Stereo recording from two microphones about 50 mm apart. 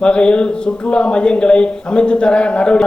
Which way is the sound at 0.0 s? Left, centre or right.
Centre.